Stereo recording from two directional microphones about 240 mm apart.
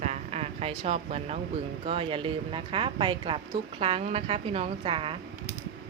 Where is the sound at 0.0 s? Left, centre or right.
Right.